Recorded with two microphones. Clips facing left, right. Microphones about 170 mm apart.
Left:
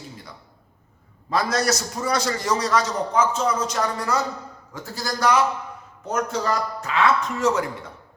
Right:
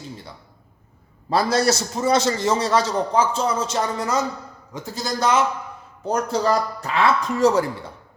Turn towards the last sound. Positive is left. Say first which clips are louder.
# right 4 dB
turn(degrees=-35)  # may be behind; listen again after turning